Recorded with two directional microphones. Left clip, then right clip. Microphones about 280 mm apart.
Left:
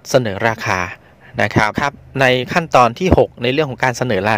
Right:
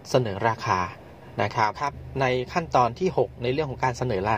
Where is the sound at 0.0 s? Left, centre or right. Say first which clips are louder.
Left 8 dB; left.